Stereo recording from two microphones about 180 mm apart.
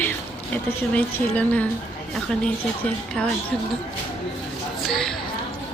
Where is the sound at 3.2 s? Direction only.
5° left (ahead or behind).